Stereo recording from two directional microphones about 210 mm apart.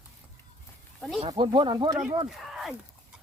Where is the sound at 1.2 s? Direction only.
25° right (ahead or behind).